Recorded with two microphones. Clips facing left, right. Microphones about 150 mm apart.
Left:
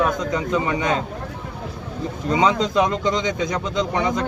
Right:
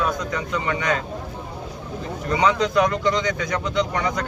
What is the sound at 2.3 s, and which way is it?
Speech, 20° left (ahead or behind).